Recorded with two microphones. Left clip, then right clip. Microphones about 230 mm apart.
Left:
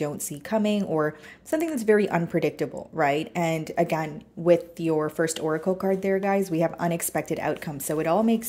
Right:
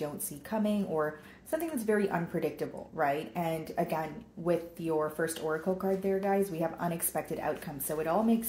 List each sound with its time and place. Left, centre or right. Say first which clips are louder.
0.0 s speech: left 7 dB; left